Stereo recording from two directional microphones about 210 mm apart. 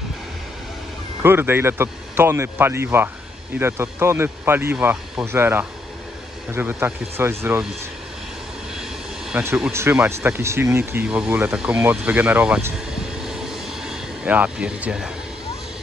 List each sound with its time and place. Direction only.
1.2 s speech: 10° right (ahead or behind)
8.7 s speech: 5° right (ahead or behind)